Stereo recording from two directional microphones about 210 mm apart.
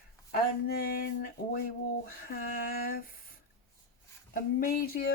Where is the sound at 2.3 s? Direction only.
45° left (ahead or behind).